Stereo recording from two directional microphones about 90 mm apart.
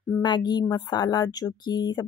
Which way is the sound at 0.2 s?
55° left (ahead or behind).